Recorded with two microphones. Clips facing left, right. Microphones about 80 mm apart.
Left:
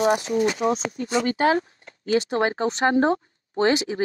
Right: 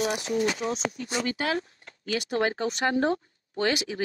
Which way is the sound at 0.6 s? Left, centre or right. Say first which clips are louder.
Left 6 dB; left.